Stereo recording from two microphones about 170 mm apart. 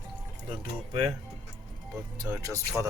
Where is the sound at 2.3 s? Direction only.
20° right (ahead or behind).